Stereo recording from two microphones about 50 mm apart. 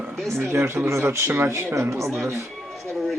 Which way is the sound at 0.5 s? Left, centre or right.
Right.